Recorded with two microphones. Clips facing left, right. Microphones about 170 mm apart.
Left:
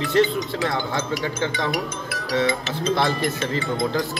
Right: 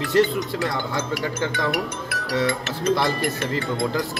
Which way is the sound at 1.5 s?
65° right (ahead or behind).